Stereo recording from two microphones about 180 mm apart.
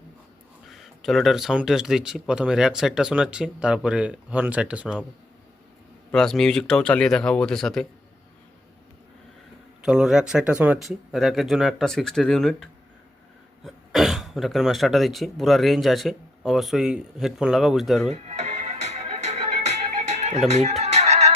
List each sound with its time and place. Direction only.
0.7 s speech: centre (ahead or behind)
6.1 s speech: centre (ahead or behind)
9.8 s speech: 5° right (ahead or behind)
13.7 s speech: centre (ahead or behind)
18.1 s music: 40° right (ahead or behind)